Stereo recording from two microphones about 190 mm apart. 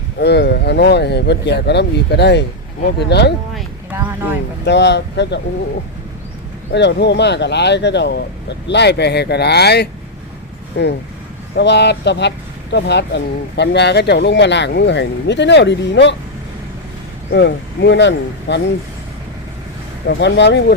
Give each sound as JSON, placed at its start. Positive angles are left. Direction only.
{"t": 0.2, "sound": "speech", "side_deg": 60}
{"t": 3.9, "sound": "speech", "side_deg": -10}
{"t": 4.6, "sound": "speech", "side_deg": 65}
{"t": 6.7, "sound": "speech", "side_deg": 65}
{"t": 17.3, "sound": "speech", "side_deg": 65}
{"t": 20.1, "sound": "speech", "side_deg": 65}